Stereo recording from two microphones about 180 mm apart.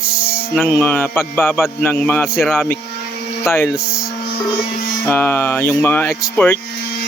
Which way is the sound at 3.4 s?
15° left (ahead or behind).